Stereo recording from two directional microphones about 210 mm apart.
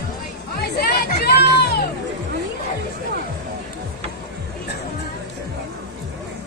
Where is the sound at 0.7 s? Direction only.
50° left (ahead or behind).